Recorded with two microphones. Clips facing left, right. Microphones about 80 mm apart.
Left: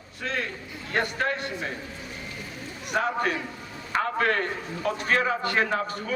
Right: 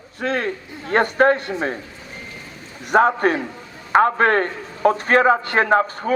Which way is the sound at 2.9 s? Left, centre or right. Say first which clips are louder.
Right 10 dB; right.